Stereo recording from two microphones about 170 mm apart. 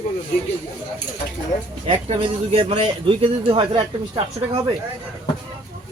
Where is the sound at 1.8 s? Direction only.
35° right (ahead or behind).